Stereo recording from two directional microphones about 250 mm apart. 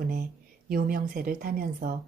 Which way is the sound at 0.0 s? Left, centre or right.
Right.